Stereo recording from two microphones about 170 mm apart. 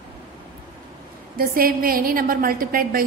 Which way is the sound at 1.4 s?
60° right (ahead or behind).